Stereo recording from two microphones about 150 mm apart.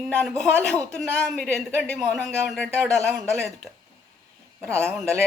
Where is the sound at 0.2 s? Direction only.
5° left (ahead or behind).